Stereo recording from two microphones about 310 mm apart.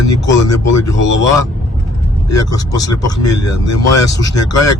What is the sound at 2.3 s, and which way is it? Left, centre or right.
Speech, centre.